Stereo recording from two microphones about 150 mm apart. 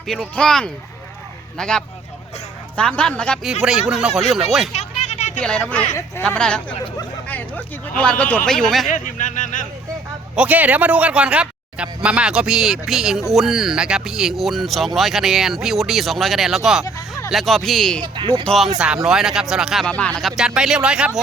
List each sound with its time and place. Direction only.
0.1 s speech: 5° left (ahead or behind)
4.7 s a sound: 45° left (ahead or behind)
5.4 s speech: 5° left (ahead or behind)
5.9 s speech: 20° left (ahead or behind)
6.2 s speech: 5° left (ahead or behind)
8.9 s speech: 60° left (ahead or behind)
10.3 s speech: 10° right (ahead or behind)
16.8 s a sound: 25° left (ahead or behind)
17.3 s speech: centre (ahead or behind)
18.0 s speech: 30° right (ahead or behind)
18.4 s speech: centre (ahead or behind)
19.9 s speech: 10° left (ahead or behind)